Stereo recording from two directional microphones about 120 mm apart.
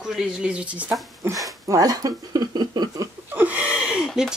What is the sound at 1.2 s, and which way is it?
Speech, 25° right (ahead or behind).